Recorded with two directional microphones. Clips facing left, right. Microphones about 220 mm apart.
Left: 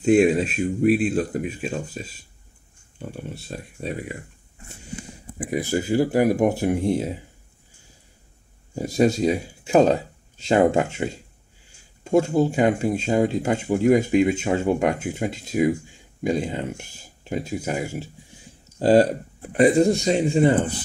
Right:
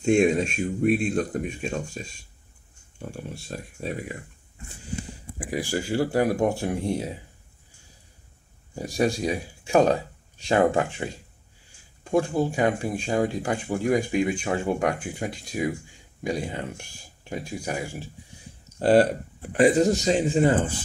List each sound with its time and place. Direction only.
0.0 s speech: 5° left (ahead or behind)
5.5 s speech: 20° left (ahead or behind)
8.7 s speech: 20° left (ahead or behind)
19.6 s speech: centre (ahead or behind)